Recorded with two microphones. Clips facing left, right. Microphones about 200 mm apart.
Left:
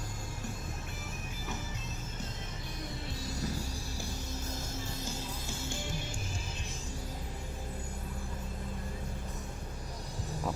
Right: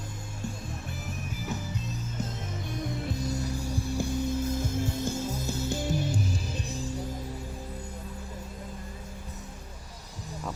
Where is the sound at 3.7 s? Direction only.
55° right (ahead or behind); by 6.8 s 35° right (ahead or behind).